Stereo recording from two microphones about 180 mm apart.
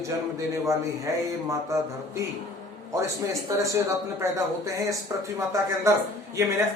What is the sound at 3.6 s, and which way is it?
A man's voice, 15° right (ahead or behind).